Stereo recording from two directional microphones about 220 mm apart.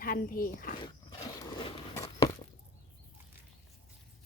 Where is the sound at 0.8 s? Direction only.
20° left (ahead or behind).